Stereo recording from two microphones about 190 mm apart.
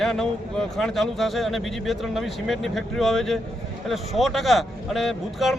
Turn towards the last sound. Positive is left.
turn(degrees=0)  # may be behind; listen again after turning